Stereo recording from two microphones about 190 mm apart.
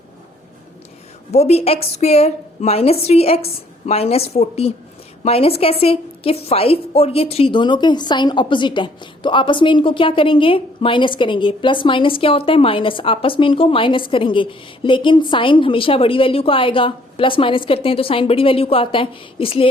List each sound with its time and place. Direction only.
1.3 s a woman's voice: 35° left (ahead or behind)